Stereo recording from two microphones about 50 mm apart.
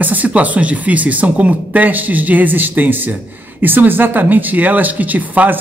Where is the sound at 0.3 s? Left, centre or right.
Right.